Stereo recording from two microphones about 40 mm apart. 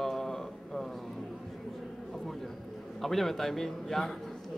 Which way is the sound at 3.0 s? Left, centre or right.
Centre.